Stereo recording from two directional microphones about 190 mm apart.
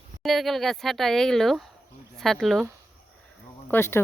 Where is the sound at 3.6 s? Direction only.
10° left (ahead or behind).